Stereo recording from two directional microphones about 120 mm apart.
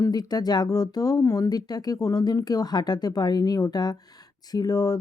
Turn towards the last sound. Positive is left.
turn(degrees=30)  # may be behind; listen again after turning